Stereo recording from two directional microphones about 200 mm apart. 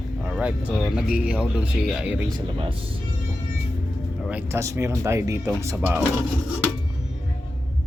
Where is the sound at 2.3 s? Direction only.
25° right (ahead or behind).